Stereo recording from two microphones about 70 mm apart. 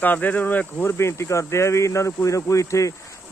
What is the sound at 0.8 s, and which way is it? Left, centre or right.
Speech, left.